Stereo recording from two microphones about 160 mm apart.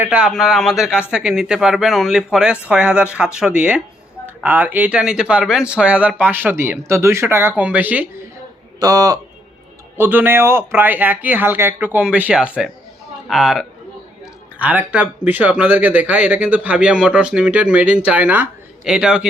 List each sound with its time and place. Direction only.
0.0 s speech: 5° right (ahead or behind)
8.8 s speech: 20° right (ahead or behind)
10.0 s speech: 10° right (ahead or behind)